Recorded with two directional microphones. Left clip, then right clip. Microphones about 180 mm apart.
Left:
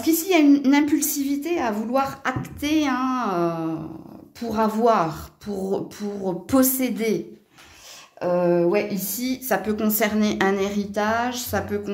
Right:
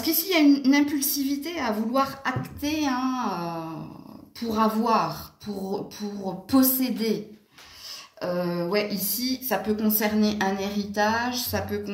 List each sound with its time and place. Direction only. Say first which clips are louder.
0.0 s a woman's voice: left 3 dB; 55° left (ahead or behind)
8.2 s a woman's voice: left 8 dB; 50° left (ahead or behind)